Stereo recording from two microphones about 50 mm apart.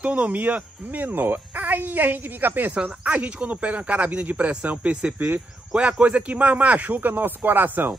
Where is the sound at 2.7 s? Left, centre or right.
Right.